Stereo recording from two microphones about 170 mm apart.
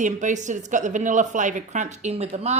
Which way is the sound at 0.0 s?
45° right (ahead or behind).